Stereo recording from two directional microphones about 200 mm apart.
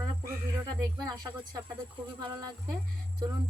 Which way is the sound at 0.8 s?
20° right (ahead or behind).